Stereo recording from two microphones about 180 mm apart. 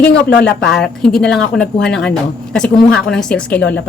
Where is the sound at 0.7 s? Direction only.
Centre (ahead or behind).